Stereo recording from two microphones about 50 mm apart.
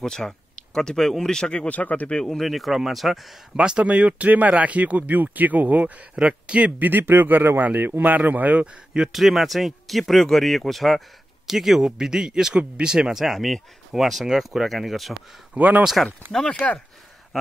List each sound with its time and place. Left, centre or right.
0.0 s speech: centre
1.7 s speech: left
2.0 s speech: centre
2.3 s speech: centre
3.5 s speech: centre
6.1 s speech: right
6.8 s speech: right
9.1 s speech: centre
13.2 s speech: centre
15.5 s speech: right
16.3 s speech: centre